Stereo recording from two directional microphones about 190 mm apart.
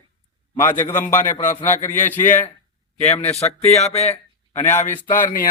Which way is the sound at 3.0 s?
35° left (ahead or behind).